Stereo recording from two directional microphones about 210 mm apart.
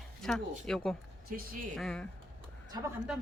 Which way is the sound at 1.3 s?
40° right (ahead or behind).